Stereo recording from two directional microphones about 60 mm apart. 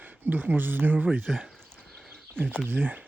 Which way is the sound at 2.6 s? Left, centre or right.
Right.